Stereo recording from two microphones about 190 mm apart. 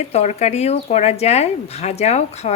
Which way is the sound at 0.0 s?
35° left (ahead or behind).